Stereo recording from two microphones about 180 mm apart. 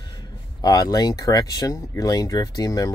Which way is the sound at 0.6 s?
20° left (ahead or behind).